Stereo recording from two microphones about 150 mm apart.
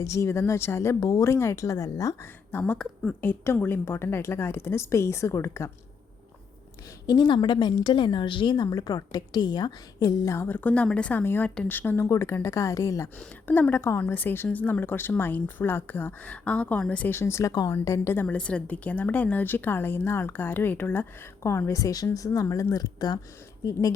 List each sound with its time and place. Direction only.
0.0 s a woman's voice: 20° left (ahead or behind)
2.5 s speech: 10° left (ahead or behind)
7.1 s a woman's voice: 30° left (ahead or behind)